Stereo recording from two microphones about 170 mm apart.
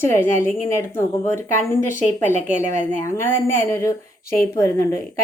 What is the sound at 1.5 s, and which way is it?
A woman's voice, 50° left (ahead or behind).